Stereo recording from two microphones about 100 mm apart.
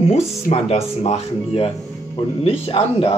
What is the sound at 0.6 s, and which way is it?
Speech, 90° left.